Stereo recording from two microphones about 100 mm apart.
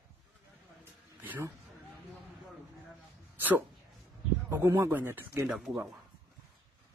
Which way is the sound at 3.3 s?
15° right (ahead or behind).